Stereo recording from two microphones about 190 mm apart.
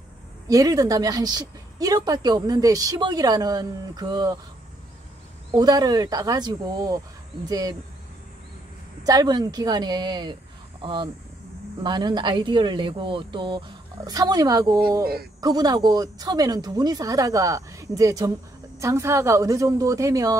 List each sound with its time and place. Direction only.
0.5 s a woman's voice: 20° right (ahead or behind)
5.6 s a woman's voice: 20° right (ahead or behind)
9.0 s a woman's voice: 20° right (ahead or behind)